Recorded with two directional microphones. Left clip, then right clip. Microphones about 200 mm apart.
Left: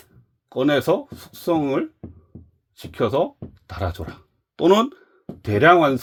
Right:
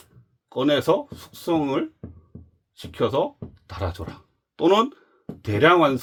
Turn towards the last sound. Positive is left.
turn(degrees=20)  # may be behind; listen again after turning